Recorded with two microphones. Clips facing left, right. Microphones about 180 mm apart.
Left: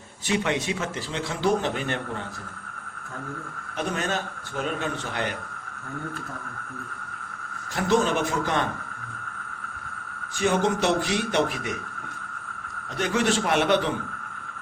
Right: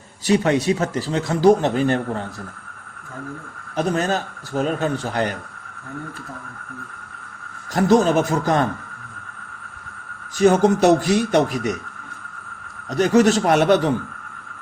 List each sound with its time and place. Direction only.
0.3 s speech: 40° right (ahead or behind)
3.8 s speech: 35° right (ahead or behind)
7.7 s speech: 40° right (ahead or behind)
10.3 s speech: 40° right (ahead or behind)
12.9 s speech: 40° right (ahead or behind)